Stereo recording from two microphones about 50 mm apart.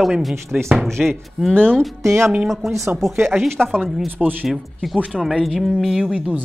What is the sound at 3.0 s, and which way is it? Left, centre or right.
Speech, right.